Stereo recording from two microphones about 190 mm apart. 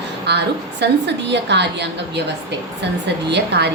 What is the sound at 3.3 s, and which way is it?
Speech, 60° right (ahead or behind).